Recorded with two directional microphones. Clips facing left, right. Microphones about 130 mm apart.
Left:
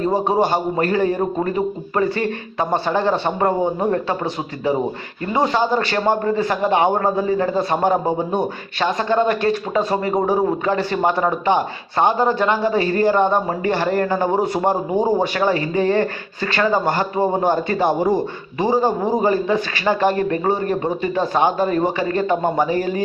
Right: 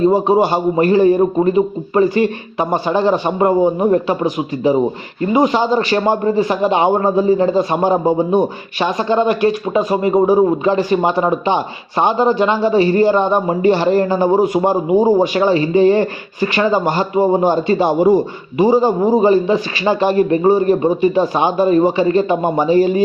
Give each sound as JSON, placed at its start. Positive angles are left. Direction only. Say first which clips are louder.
{"t": 0.0, "sound": "a man's voice", "louder": "right 5 dB", "side_deg": -20}